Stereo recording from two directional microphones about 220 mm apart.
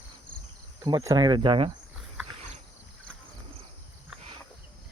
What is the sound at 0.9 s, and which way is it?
Speech, 15° right (ahead or behind).